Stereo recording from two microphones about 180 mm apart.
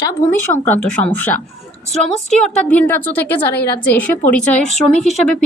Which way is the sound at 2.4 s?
5° left (ahead or behind).